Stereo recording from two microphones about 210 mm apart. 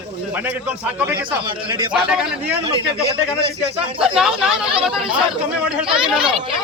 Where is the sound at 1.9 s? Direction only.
5° right (ahead or behind).